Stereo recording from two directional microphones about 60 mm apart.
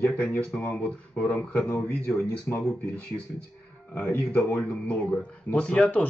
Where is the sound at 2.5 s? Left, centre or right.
Left.